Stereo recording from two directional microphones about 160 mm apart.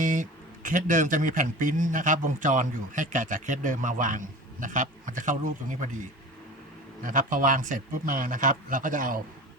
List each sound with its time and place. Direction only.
0.0 s speech: 55° right (ahead or behind)